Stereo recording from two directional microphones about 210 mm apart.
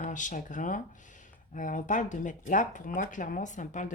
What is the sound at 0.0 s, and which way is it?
Speech, 35° left (ahead or behind).